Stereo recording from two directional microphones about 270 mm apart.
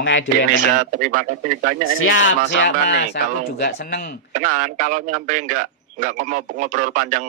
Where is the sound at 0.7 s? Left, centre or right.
Right.